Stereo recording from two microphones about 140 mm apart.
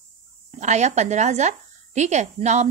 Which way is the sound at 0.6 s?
55° right (ahead or behind).